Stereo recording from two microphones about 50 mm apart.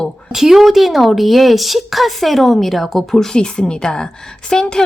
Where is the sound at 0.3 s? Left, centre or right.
Centre.